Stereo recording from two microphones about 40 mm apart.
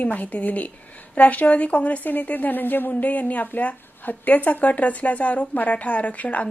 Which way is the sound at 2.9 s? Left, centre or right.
Left.